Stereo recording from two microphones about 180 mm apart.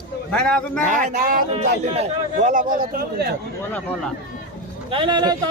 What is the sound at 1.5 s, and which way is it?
A man's voice, 35° right (ahead or behind).